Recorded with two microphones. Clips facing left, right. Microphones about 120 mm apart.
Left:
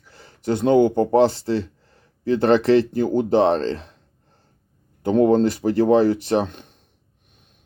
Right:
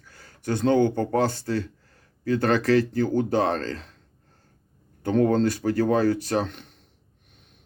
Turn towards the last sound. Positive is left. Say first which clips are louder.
# left 5 dB
turn(degrees=20)  # may be behind; listen again after turning